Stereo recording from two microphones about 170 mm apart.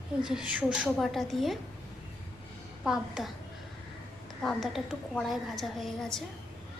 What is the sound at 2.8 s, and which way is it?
Speech, 5° right (ahead or behind).